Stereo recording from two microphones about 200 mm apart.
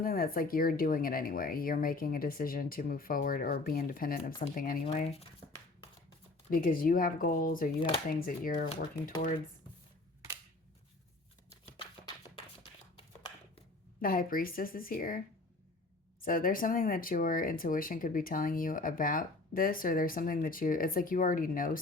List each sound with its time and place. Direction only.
0.0 s speech: 45° left (ahead or behind)
6.5 s speech: 45° left (ahead or behind)
14.0 s speech: 45° left (ahead or behind)
16.2 s speech: 45° left (ahead or behind)